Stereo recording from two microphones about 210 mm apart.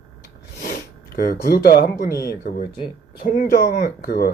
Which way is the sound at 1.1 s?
45° left (ahead or behind).